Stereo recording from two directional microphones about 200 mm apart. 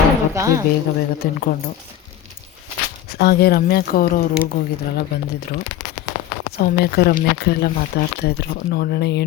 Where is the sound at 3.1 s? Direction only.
55° left (ahead or behind).